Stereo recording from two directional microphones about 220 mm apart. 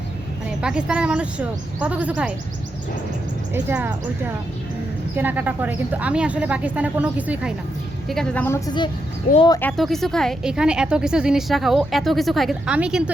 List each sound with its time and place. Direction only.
0.6 s speech: 5° right (ahead or behind)
3.5 s speech: 5° right (ahead or behind)
5.1 s speech: 10° right (ahead or behind)
8.1 s a woman's voice: 5° left (ahead or behind); by 9.6 s 20° left (ahead or behind)
9.6 s speech: 5° left (ahead or behind)